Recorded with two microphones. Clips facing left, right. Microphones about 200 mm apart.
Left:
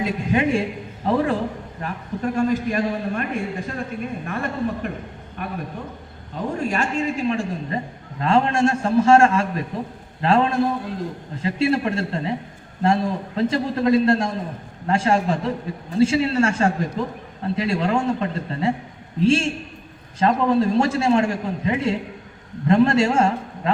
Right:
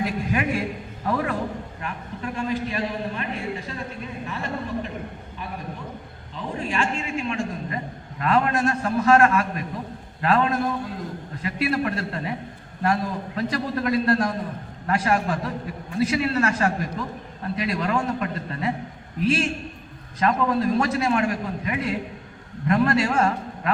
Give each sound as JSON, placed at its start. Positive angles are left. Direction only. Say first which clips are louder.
{"t": 0.0, "sound": "a man's voice", "louder": "left 4 dB", "side_deg": 25}
{"t": 1.8, "sound": "a man's voice", "louder": "left 9 dB", "side_deg": 40}
{"t": 6.3, "sound": "a man's voice", "louder": "left 4 dB", "side_deg": 45}